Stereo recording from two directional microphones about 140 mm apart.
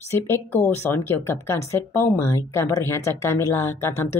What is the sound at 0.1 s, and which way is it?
Speech, 15° left (ahead or behind).